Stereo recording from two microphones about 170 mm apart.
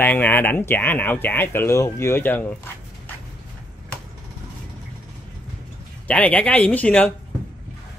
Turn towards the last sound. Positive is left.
turn(degrees=10)  # may be behind; listen again after turning